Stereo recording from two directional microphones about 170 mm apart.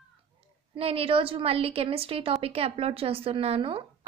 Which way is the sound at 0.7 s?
35° right (ahead or behind).